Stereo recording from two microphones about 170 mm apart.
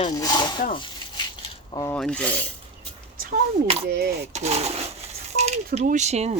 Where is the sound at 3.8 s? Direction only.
65° right (ahead or behind).